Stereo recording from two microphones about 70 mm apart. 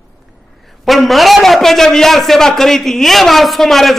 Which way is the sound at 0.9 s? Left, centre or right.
Centre.